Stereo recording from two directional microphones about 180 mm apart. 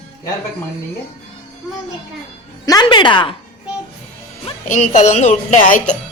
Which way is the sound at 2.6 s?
20° left (ahead or behind).